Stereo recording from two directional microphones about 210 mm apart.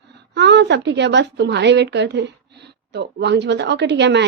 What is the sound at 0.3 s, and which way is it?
A woman's voice, 55° right (ahead or behind).